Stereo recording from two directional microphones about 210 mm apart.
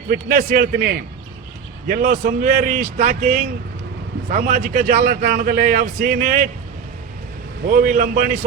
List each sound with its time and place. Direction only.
0.1 s a man's voice: 45° right (ahead or behind)
7.7 s a man's voice: 40° right (ahead or behind)